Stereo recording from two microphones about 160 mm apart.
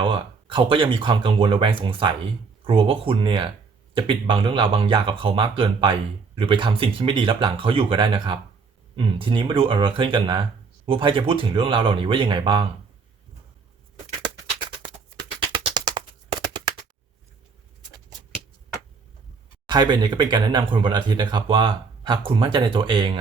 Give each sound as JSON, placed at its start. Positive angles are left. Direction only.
{"t": 0.0, "sound": "speech", "side_deg": -30}
{"t": 14.8, "sound": "music", "side_deg": -30}
{"t": 19.6, "sound": "speech", "side_deg": -30}